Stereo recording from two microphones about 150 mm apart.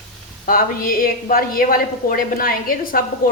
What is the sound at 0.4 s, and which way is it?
A woman's voice, 70° left (ahead or behind).